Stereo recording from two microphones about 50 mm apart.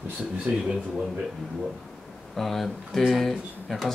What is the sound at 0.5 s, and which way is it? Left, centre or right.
Speech, right.